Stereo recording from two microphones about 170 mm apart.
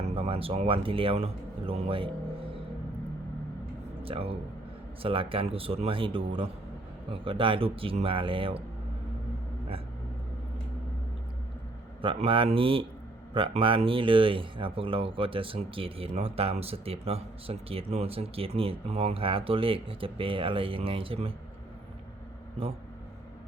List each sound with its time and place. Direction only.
0.0 s speech: 35° right (ahead or behind)
4.0 s speech: 35° right (ahead or behind)
12.0 s speech: 30° right (ahead or behind)